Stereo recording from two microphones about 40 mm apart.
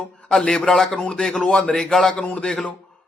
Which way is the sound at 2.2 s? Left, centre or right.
Left.